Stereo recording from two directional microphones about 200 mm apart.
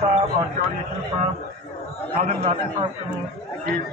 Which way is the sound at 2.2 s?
35° right (ahead or behind).